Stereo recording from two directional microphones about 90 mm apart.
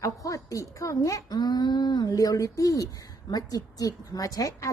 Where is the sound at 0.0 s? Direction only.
35° left (ahead or behind).